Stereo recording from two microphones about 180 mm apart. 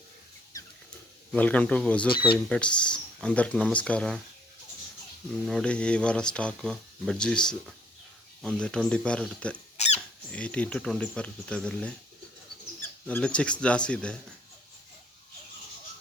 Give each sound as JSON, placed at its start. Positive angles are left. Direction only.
{"t": 1.3, "sound": "speech", "side_deg": 10}
{"t": 5.3, "sound": "speech", "side_deg": 0}
{"t": 9.7, "sound": "squeak", "side_deg": 40}
{"t": 10.3, "sound": "speech", "side_deg": 5}